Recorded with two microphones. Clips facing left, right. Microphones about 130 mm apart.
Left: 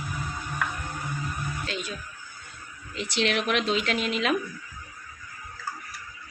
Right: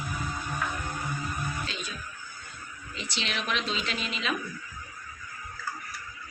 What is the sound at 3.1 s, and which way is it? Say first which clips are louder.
Speech: left 7 dB; 65° left (ahead or behind).